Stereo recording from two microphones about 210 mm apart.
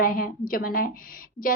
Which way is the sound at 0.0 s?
40° left (ahead or behind).